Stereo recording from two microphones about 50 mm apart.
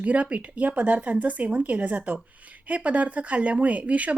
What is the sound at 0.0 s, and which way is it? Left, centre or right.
Speech, right.